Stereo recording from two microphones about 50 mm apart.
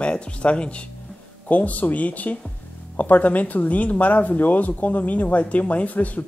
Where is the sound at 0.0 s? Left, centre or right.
Left.